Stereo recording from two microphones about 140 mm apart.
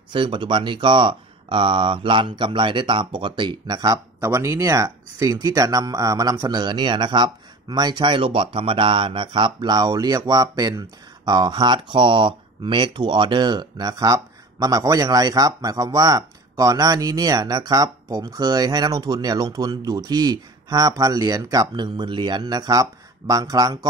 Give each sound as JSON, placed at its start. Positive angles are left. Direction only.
{"t": 0.1, "sound": "speech", "side_deg": -35}